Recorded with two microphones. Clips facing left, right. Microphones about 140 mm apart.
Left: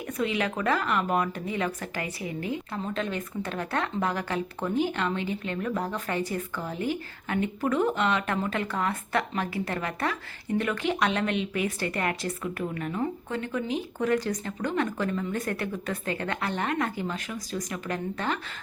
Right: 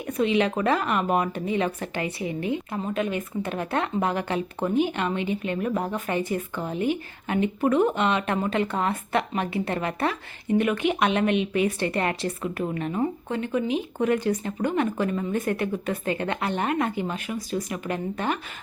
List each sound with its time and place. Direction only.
0.1 s speech: 20° right (ahead or behind)